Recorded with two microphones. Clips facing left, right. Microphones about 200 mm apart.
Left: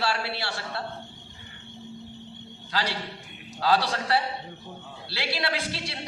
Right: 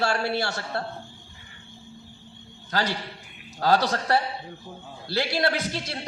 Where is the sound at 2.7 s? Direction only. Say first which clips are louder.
Right 3 dB; 50° right (ahead or behind).